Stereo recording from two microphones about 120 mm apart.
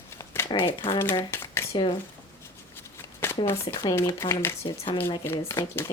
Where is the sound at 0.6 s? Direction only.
45° left (ahead or behind).